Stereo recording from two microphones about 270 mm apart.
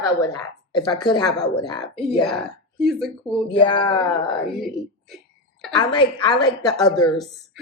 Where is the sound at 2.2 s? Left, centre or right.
Centre.